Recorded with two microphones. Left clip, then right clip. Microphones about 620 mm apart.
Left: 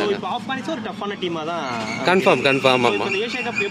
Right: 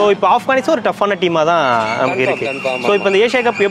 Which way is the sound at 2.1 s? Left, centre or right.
Left.